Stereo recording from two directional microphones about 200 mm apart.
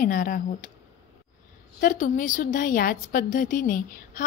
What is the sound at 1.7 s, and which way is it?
A woman's voice, 45° left (ahead or behind).